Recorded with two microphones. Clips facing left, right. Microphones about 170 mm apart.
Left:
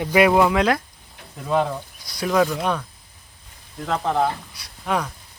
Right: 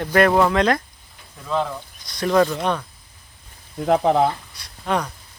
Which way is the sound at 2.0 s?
5° left (ahead or behind).